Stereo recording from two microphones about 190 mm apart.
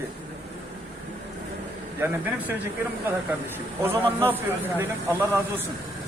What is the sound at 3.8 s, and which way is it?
Speech, 10° right (ahead or behind).